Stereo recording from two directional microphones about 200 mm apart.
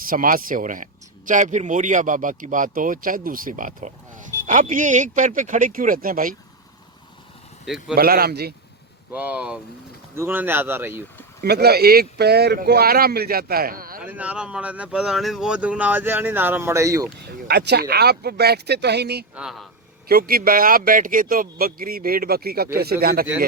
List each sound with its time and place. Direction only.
0.0 s speech: 45° right (ahead or behind)
7.6 s speech: 5° right (ahead or behind)
7.9 s a man's voice: 50° right (ahead or behind)
9.1 s speech: 5° right (ahead or behind)
11.4 s a man's voice: 55° right (ahead or behind)
14.0 s speech: 5° right (ahead or behind)
17.2 s a man's voice: 55° right (ahead or behind)
19.4 s speech: centre (ahead or behind)
20.1 s a man's voice: 50° right (ahead or behind)